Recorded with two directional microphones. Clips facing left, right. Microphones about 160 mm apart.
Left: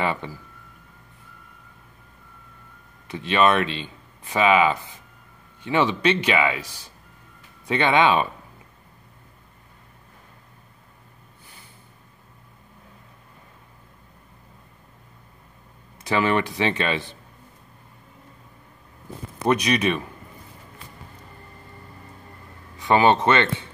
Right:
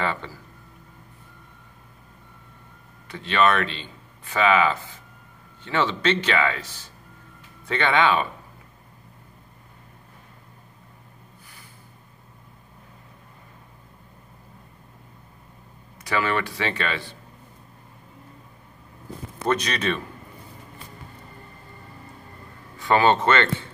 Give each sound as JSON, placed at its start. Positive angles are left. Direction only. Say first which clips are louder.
{"t": 0.0, "sound": "a man's voice", "louder": "left 2 dB", "side_deg": 15}
{"t": 3.1, "sound": "a man's voice", "louder": "left 2 dB", "side_deg": 20}
{"t": 16.0, "sound": "speech", "louder": "left 3 dB", "side_deg": 20}
{"t": 19.4, "sound": "a man's voice", "louder": "left 3 dB", "side_deg": 15}
{"t": 22.8, "sound": "speech", "louder": "left 1 dB", "side_deg": 20}